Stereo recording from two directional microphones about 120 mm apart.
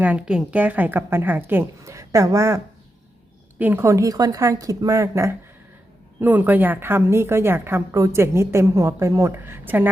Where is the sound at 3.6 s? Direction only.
15° right (ahead or behind).